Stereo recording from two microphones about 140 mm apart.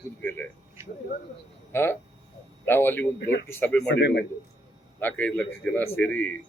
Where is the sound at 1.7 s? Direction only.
15° left (ahead or behind).